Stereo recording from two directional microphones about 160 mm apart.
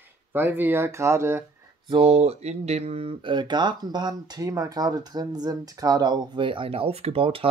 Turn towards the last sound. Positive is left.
turn(degrees=-35)  # may be behind; listen again after turning